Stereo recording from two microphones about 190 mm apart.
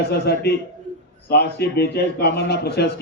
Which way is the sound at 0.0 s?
60° left (ahead or behind).